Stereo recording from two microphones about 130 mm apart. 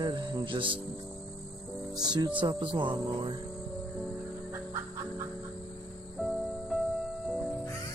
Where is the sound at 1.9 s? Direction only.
30° right (ahead or behind).